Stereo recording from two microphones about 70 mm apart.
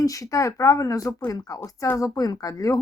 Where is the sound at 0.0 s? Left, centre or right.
Left.